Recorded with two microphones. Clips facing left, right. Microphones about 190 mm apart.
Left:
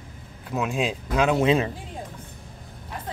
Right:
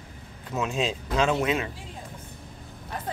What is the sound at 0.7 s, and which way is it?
Speech, 10° left (ahead or behind).